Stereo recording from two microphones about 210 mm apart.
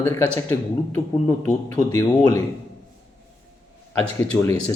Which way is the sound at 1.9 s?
15° left (ahead or behind).